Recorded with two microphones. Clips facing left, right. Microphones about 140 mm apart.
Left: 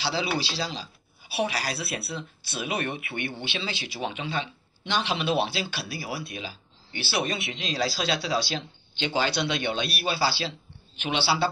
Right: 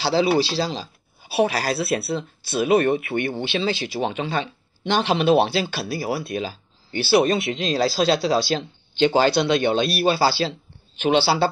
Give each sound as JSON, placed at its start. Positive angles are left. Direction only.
{"t": 0.0, "sound": "speech", "side_deg": -45}